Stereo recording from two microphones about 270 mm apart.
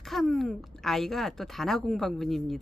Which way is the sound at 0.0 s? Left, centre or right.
Centre.